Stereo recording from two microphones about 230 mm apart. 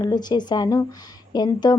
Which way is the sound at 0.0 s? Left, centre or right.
Centre.